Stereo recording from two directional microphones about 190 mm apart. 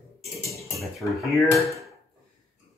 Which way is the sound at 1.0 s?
Centre (ahead or behind).